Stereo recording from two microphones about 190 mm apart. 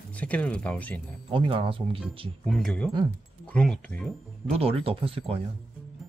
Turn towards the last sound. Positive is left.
turn(degrees=-30)  # may be behind; listen again after turning